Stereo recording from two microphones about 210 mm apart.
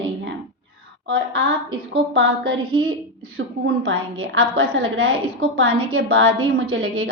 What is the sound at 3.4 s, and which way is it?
Speech, 60° right (ahead or behind).